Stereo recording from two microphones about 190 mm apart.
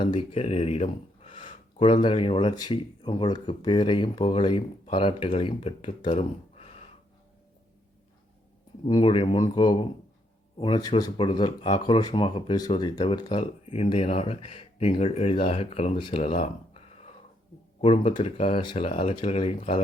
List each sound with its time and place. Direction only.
0.0 s speech: 25° left (ahead or behind)
8.9 s speech: 30° left (ahead or behind)
17.7 s speech: 30° left (ahead or behind)